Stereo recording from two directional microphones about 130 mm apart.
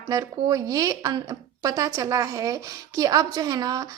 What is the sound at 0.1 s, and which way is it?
A woman's voice, 30° right (ahead or behind).